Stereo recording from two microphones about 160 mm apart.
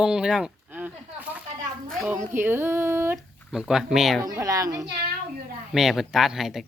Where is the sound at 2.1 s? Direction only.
10° right (ahead or behind).